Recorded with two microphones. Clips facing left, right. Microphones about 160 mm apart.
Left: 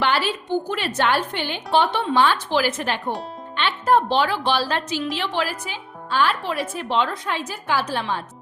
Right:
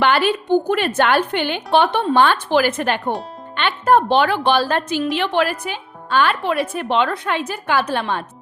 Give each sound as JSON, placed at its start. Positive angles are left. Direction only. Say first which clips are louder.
{"t": 0.0, "sound": "speech", "louder": "right 5 dB", "side_deg": -60}